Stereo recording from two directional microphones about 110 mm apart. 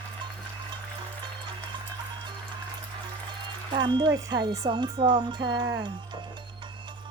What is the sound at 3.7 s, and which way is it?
Speech, 45° right (ahead or behind).